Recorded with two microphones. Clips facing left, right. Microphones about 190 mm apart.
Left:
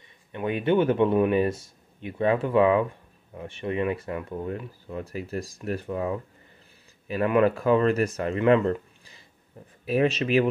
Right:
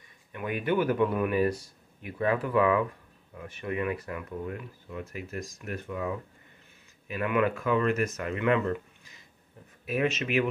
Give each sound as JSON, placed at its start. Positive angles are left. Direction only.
{"t": 0.3, "sound": "speech", "side_deg": 25}